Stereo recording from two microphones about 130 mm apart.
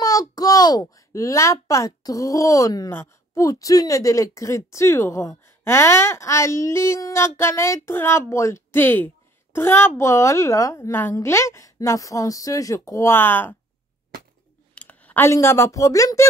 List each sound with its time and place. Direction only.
0.0 s a child's voice: 30° left (ahead or behind)
14.8 s speech: 10° left (ahead or behind)